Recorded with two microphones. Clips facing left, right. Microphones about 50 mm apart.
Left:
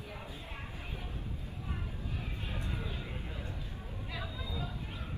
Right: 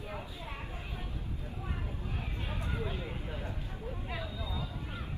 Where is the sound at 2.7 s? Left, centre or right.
Right.